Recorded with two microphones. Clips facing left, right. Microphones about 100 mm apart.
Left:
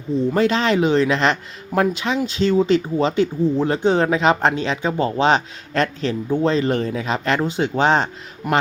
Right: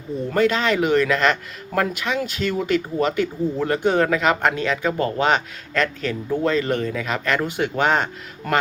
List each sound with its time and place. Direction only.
0.3 s speech: 30° left (ahead or behind)